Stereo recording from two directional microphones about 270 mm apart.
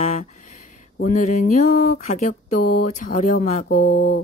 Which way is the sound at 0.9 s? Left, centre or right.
Left.